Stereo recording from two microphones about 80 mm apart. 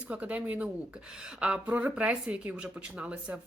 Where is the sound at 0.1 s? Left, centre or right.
Centre.